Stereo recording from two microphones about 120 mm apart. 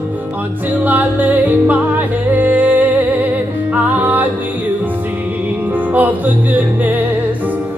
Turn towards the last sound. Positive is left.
turn(degrees=-15)  # may be behind; listen again after turning